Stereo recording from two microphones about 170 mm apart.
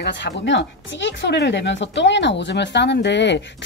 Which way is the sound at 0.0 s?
90° left.